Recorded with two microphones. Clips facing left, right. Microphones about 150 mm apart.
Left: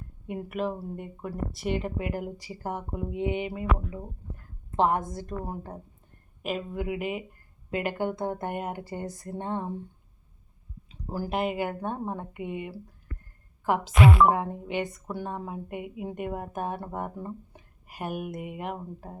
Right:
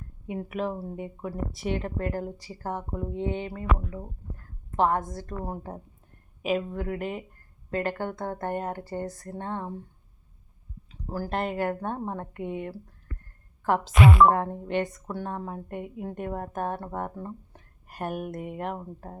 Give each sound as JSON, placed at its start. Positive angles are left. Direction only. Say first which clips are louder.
{"t": 0.3, "sound": "a woman's voice", "louder": "even", "side_deg": 0}
{"t": 4.8, "sound": "a woman's voice", "louder": "even", "side_deg": 20}
{"t": 6.4, "sound": "a woman's voice", "louder": "right 3 dB", "side_deg": 5}
{"t": 10.8, "sound": "a sound", "louder": "even", "side_deg": 20}
{"t": 11.3, "sound": "a woman's voice", "louder": "even", "side_deg": 5}